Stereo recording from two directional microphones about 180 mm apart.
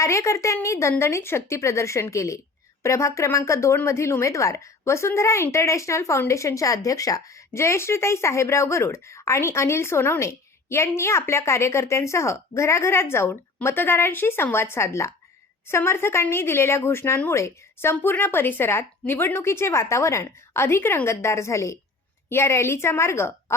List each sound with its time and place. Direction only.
0.0 s speech: 15° left (ahead or behind)